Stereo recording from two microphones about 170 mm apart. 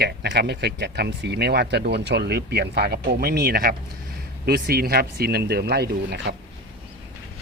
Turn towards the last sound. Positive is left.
turn(degrees=-80)